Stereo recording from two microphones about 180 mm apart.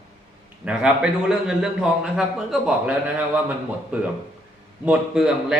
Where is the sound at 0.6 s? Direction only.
5° right (ahead or behind).